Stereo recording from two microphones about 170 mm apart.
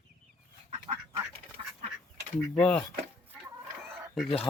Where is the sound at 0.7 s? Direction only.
35° right (ahead or behind).